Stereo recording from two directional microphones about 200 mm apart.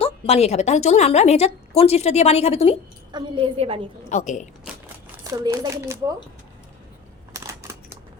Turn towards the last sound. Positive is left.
turn(degrees=-15)  # may be behind; listen again after turning